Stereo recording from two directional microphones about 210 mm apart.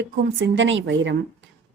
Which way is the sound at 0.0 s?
60° right (ahead or behind).